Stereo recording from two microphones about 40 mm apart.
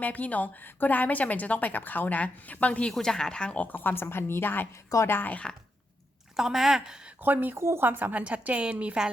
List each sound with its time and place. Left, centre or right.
0.0 s a woman's voice: left
3.0 s speech: centre
3.8 s a woman's voice: left
6.3 s speech: centre
7.2 s a woman's voice: right
8.2 s a woman's voice: right